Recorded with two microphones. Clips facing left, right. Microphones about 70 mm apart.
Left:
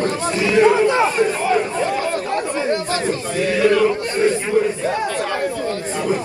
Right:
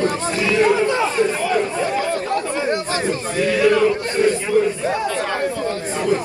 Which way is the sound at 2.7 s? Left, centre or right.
Right.